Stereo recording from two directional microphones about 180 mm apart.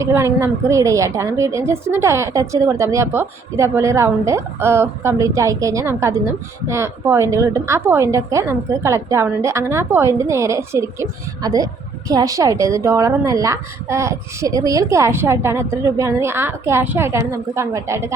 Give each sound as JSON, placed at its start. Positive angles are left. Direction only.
{"t": 0.0, "sound": "a woman's voice", "side_deg": -15}